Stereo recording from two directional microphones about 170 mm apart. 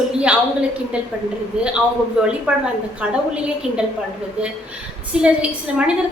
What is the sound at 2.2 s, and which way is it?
Speech, 5° right (ahead or behind).